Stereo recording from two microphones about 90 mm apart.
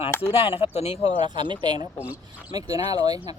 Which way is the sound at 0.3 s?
90° left.